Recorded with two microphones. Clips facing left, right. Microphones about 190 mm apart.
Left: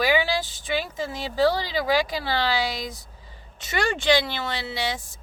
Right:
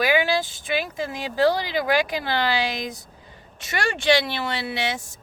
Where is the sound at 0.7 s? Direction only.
15° right (ahead or behind).